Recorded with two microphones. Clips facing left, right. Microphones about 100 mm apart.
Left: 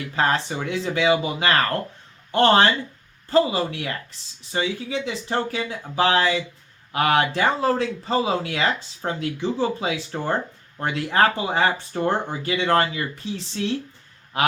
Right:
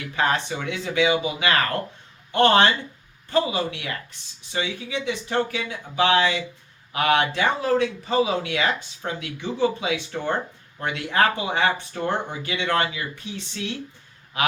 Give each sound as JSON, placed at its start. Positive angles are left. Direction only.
{"t": 0.2, "sound": "speech", "side_deg": 35}